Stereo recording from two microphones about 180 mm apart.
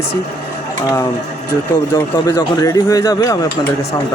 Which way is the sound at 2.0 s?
15° left (ahead or behind).